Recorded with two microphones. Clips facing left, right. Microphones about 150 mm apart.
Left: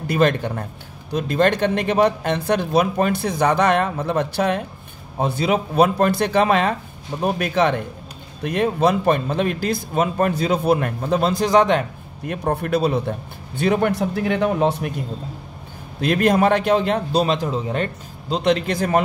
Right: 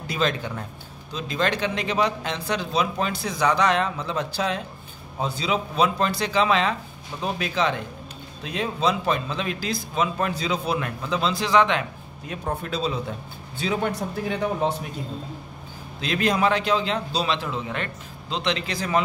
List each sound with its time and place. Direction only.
0.0 s a man's voice: 55° left (ahead or behind)
12.3 s speech: 60° left (ahead or behind)
16.0 s a man's voice: 55° left (ahead or behind); by 17.8 s 35° left (ahead or behind)
18.3 s a man's voice: 45° left (ahead or behind)